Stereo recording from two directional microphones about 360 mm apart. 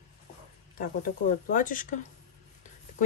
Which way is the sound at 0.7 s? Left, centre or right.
Left.